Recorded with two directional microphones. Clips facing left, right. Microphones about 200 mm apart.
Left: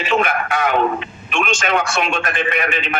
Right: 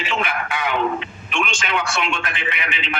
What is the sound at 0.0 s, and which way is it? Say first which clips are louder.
A man's voice: left 6 dB; 45° left (ahead or behind).